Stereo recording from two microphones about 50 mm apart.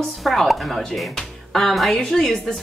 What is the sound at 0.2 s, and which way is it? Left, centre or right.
A woman's voice, centre.